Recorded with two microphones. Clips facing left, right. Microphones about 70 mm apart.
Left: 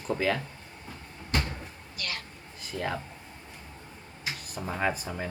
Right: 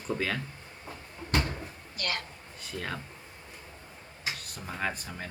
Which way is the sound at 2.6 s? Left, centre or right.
Centre.